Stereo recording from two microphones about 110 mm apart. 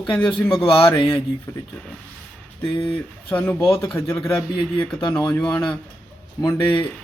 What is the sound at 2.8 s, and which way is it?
Speech, 15° left (ahead or behind).